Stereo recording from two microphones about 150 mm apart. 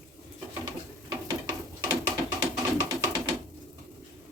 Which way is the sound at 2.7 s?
25° right (ahead or behind).